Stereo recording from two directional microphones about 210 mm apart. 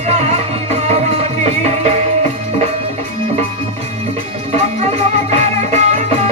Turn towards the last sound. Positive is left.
turn(degrees=-30)  # may be behind; listen again after turning